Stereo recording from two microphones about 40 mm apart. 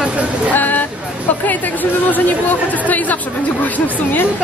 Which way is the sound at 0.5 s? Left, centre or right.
Left.